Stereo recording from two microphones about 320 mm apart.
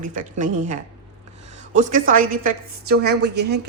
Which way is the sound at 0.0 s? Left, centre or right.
Right.